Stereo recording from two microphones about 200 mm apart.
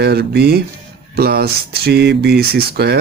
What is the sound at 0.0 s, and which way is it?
Speech, 55° right (ahead or behind).